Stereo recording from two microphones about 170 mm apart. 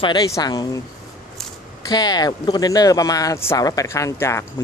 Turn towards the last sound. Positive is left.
turn(degrees=15)  # may be behind; listen again after turning